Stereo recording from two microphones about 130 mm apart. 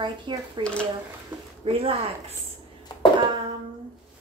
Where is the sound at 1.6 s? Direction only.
45° right (ahead or behind).